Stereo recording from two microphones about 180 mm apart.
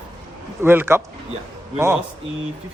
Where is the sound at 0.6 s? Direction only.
15° right (ahead or behind).